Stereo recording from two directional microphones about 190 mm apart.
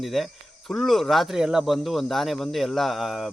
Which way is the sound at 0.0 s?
Centre (ahead or behind).